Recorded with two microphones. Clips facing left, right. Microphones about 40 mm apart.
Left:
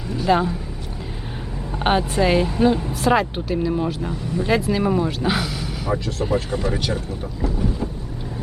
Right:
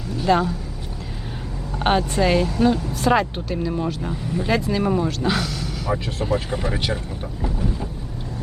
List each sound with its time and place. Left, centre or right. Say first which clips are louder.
0.2 s speech: even; centre
1.8 s speech: even; centre
2.5 s a woman's voice: left 1 dB; centre
3.0 s speech: even; centre
6.5 s speech: left 2 dB; centre